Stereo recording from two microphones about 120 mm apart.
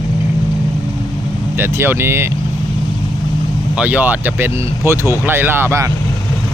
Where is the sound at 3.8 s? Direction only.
10° right (ahead or behind).